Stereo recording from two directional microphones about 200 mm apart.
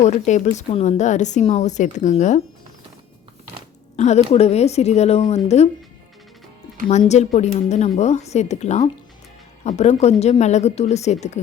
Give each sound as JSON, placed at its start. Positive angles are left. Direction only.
{"t": 0.0, "sound": "a woman's voice", "side_deg": 35}
{"t": 3.9, "sound": "a woman's voice", "side_deg": 35}
{"t": 7.1, "sound": "a woman's voice", "side_deg": 35}